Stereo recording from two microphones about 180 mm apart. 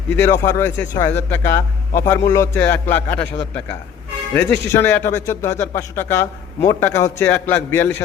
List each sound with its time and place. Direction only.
0.2 s speech: 15° left (ahead or behind)
4.4 s speech: 10° left (ahead or behind)